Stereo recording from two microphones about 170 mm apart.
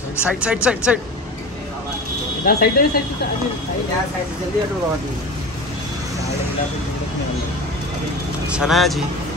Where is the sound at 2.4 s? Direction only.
60° left (ahead or behind).